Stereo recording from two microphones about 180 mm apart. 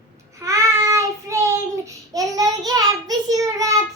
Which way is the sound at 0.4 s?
15° right (ahead or behind).